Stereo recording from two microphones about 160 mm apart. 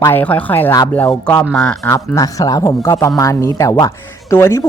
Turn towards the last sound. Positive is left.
turn(degrees=15)  # may be behind; listen again after turning